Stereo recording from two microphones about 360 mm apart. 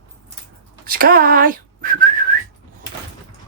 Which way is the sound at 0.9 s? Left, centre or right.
Right.